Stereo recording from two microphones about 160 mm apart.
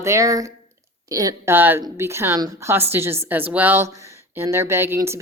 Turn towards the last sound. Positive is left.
turn(degrees=-15)  # may be behind; listen again after turning